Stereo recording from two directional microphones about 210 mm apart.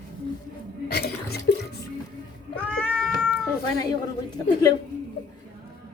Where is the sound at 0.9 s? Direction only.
50° left (ahead or behind).